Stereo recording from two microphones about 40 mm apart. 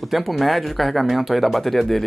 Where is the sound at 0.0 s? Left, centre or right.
Centre.